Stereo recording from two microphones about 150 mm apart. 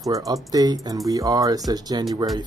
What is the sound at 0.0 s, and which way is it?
Speech, 25° right (ahead or behind).